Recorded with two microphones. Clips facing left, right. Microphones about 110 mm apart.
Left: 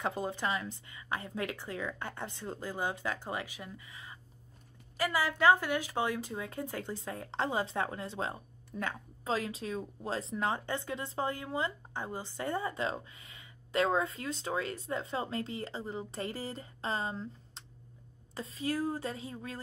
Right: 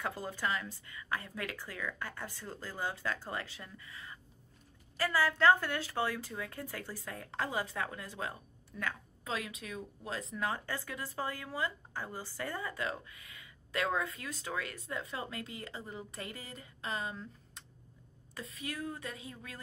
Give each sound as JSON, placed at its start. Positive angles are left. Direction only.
{"t": 0.0, "sound": "speech", "side_deg": 20}